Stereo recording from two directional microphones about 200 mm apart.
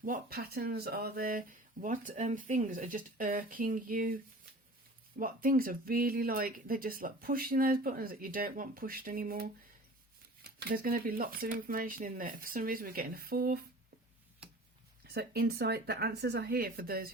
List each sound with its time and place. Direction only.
0.0 s speech: 45° right (ahead or behind)
15.0 s speech: 50° right (ahead or behind)